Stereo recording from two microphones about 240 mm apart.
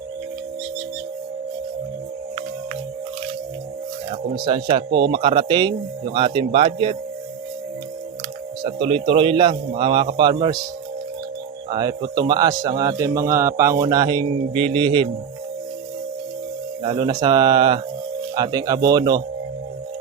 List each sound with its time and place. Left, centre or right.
4.4 s speech: centre
8.6 s speech: right
11.7 s speech: centre
16.8 s speech: centre